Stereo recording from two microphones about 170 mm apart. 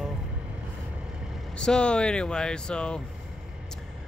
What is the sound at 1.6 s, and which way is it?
Speech, 5° left (ahead or behind).